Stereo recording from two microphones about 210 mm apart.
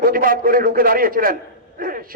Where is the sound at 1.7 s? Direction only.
40° right (ahead or behind).